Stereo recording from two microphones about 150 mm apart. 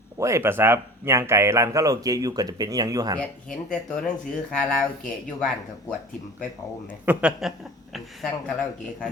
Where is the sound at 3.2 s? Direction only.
5° left (ahead or behind).